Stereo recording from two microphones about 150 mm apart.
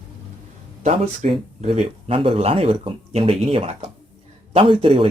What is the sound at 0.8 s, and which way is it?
Speech, 45° right (ahead or behind).